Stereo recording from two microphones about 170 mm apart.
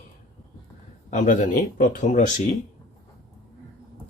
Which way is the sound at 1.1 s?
45° left (ahead or behind).